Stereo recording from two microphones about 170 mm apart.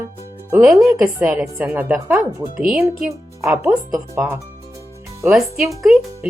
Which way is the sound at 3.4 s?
15° right (ahead or behind).